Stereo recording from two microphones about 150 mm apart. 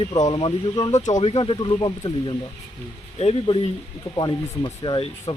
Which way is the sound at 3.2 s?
40° left (ahead or behind).